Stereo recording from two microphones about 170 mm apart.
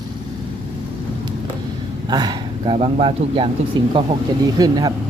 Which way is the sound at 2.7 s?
35° right (ahead or behind).